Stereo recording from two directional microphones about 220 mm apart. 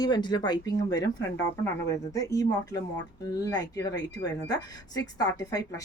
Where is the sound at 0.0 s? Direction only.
20° left (ahead or behind).